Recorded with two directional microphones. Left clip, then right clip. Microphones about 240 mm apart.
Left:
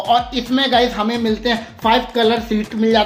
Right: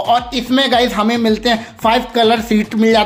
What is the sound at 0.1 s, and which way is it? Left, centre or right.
Speech, right.